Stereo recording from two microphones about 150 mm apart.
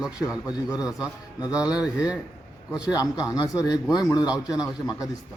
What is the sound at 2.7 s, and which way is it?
A man's voice, 25° left (ahead or behind).